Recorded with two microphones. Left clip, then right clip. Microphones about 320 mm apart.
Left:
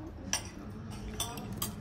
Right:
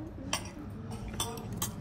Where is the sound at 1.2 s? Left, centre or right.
Centre.